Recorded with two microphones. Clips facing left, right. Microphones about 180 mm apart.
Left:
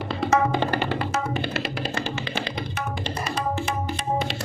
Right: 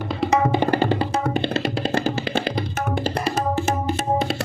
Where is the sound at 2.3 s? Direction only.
55° right (ahead or behind).